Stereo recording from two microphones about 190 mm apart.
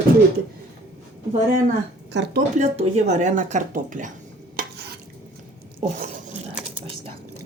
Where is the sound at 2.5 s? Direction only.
40° right (ahead or behind).